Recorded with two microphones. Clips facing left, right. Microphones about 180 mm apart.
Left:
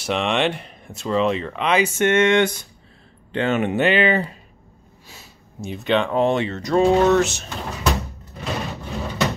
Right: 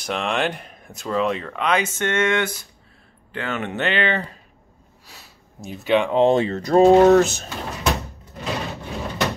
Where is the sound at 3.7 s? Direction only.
10° left (ahead or behind); by 6.1 s 10° right (ahead or behind).